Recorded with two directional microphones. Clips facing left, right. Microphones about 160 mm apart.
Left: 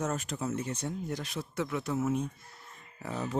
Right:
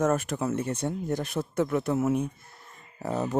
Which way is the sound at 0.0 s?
55° right (ahead or behind).